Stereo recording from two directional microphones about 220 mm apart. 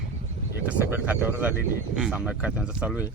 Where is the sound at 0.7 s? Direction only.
10° right (ahead or behind).